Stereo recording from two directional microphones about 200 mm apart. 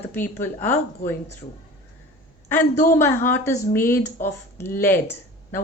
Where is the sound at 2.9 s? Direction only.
10° left (ahead or behind).